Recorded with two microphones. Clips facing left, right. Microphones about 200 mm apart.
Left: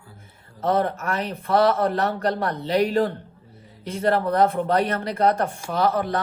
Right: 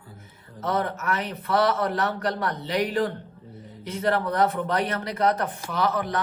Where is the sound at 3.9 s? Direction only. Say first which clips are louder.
Left 3 dB; 30° left (ahead or behind).